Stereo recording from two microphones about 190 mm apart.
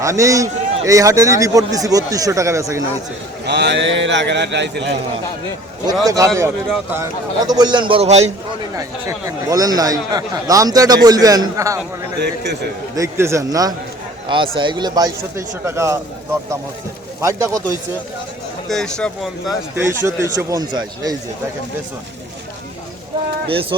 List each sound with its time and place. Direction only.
0.0 s a man's voice: 15° right (ahead or behind)
3.4 s a man's voice: 60° right (ahead or behind)
6.1 s a man's voice: 15° right (ahead or behind); by 8.3 s 35° right (ahead or behind)
8.7 s speech: 15° right (ahead or behind)
12.2 s a man's voice: 65° right (ahead or behind)
13.0 s a man's voice: 15° right (ahead or behind)
17.2 s a man's voice: 15° right (ahead or behind)
18.7 s speech: 5° left (ahead or behind)
19.8 s a man's voice: 15° right (ahead or behind)
23.5 s speech: 30° right (ahead or behind)